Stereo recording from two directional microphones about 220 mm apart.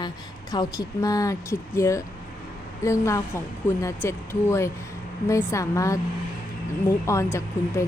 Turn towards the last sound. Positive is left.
turn(degrees=10)  # may be behind; listen again after turning